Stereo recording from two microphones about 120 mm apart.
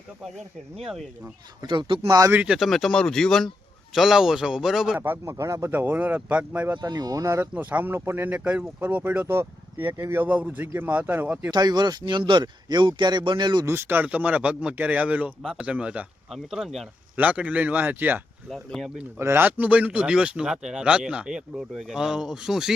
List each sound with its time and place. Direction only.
0.9 s speech: 5° right (ahead or behind)
1.6 s speech: 40° right (ahead or behind)
2.3 s speech: 10° right (ahead or behind)
4.9 s speech: 15° right (ahead or behind)
6.8 s speech: 35° right (ahead or behind)
7.5 s speech: 10° right (ahead or behind)
11.5 s speech: 35° right (ahead or behind)
13.7 s speech: 20° right (ahead or behind)
18.4 s speech: centre (ahead or behind)
19.2 s speech: 20° right (ahead or behind)